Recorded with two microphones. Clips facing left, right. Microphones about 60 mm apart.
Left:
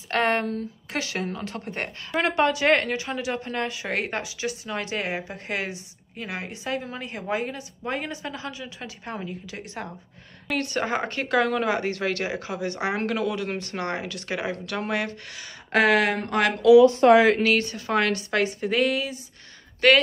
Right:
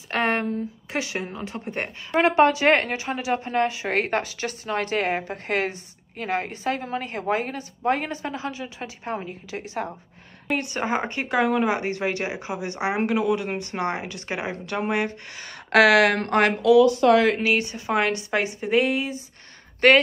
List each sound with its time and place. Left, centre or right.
0.1 s speech: right
10.5 s speech: centre
15.4 s speech: right
16.8 s speech: left
17.4 s speech: centre
19.8 s speech: right